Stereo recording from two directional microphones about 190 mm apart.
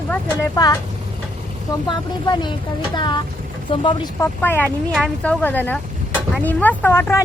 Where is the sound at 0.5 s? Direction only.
20° left (ahead or behind).